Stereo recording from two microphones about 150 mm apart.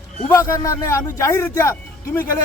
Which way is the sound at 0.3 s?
20° left (ahead or behind).